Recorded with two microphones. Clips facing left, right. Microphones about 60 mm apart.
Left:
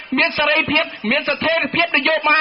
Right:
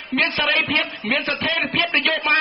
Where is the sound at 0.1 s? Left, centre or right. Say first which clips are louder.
Left 3 dB; left.